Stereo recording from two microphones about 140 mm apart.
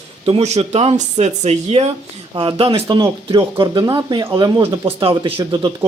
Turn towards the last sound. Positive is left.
turn(degrees=-30)  # may be behind; listen again after turning